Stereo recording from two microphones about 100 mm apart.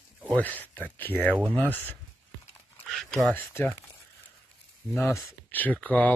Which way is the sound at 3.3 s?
20° left (ahead or behind).